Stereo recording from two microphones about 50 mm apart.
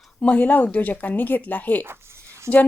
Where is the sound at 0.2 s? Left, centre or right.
Left.